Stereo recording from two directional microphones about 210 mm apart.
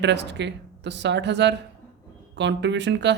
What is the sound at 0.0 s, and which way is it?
Speech, 55° right (ahead or behind).